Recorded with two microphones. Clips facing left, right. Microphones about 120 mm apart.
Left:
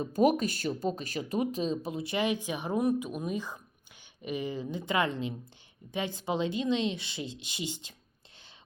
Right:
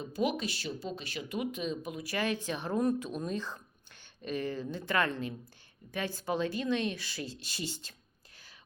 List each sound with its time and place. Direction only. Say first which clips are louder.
0.0 s speech: left 7 dB; 45° left (ahead or behind); by 7.9 s 15° left (ahead or behind)